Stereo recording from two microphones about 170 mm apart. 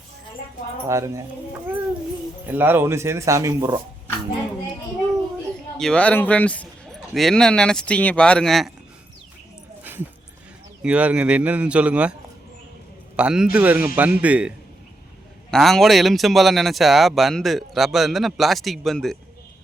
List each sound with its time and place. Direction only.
0.9 s a man's voice: 15° right (ahead or behind)
2.5 s a man's voice: 10° right (ahead or behind)
5.8 s a man's voice: 5° left (ahead or behind)
10.8 s a man's voice: 5° right (ahead or behind)
13.1 s a man's voice: 5° right (ahead or behind)